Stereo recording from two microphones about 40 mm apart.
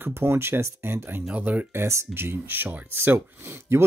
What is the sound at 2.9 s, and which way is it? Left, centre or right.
Speech, right.